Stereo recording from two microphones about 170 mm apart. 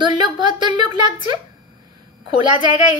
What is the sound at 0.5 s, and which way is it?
Speech, 25° right (ahead or behind).